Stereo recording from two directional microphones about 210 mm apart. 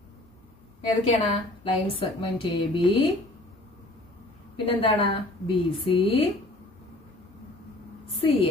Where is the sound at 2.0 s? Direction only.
25° left (ahead or behind).